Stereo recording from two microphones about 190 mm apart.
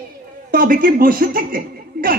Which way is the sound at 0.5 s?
50° right (ahead or behind).